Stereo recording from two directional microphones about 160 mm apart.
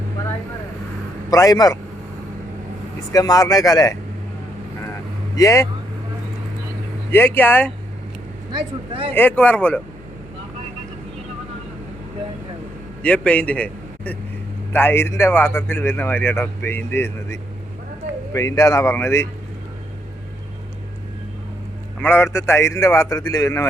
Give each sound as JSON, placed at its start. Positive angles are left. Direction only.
{"t": 1.3, "sound": "speech", "side_deg": 20}
{"t": 3.1, "sound": "speech", "side_deg": 20}
{"t": 5.4, "sound": "speech", "side_deg": 20}
{"t": 7.1, "sound": "speech", "side_deg": 15}
{"t": 8.5, "sound": "speech", "side_deg": -35}
{"t": 9.1, "sound": "speech", "side_deg": 10}
{"t": 13.0, "sound": "a man's voice", "side_deg": 5}
{"t": 22.0, "sound": "speech", "side_deg": 15}